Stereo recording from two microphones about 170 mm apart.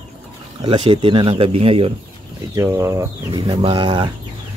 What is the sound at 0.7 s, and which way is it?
Speech, 30° right (ahead or behind).